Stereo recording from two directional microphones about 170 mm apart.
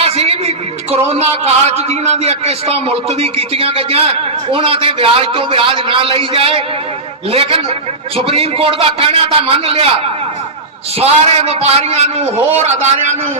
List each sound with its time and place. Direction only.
0.0 s a man's voice: 35° right (ahead or behind)
11.0 s a man's voice: 35° right (ahead or behind)